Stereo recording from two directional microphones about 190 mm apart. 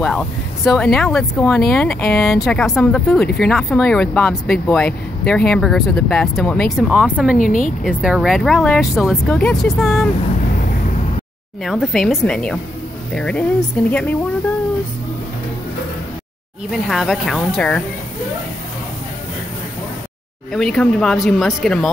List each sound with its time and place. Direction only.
0.0 s speech: centre (ahead or behind)
7.3 s a woman's voice: 45° left (ahead or behind)
7.8 s speech: 5° right (ahead or behind)
11.6 s speech: centre (ahead or behind)
16.7 s speech: centre (ahead or behind)
20.5 s speech: 5° left (ahead or behind)